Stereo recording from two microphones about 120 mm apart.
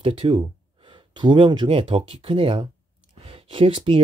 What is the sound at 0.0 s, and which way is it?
Speech, 55° right (ahead or behind).